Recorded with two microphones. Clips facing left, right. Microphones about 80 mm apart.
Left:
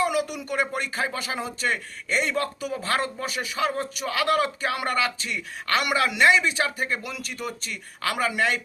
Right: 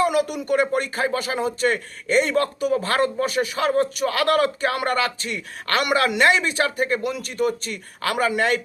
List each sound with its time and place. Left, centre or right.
0.0 s speech: right